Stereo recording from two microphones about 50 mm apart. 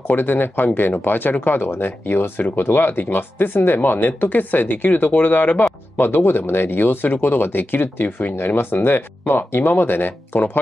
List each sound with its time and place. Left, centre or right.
0.1 s speech: left